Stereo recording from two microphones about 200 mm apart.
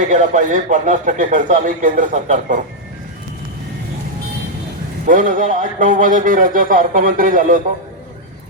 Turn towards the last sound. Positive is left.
turn(degrees=-45)  # may be behind; listen again after turning